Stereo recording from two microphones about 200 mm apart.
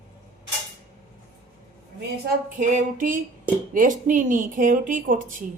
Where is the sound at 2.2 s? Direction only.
40° right (ahead or behind).